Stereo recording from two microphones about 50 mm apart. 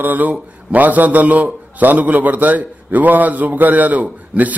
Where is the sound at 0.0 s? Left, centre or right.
Right.